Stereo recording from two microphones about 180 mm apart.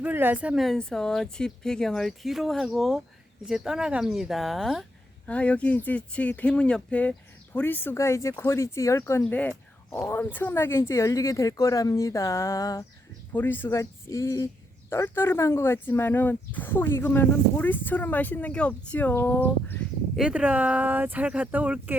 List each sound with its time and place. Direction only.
0.0 s speech: 10° right (ahead or behind); by 19.8 s 10° left (ahead or behind)
20.1 s speech: 5° right (ahead or behind)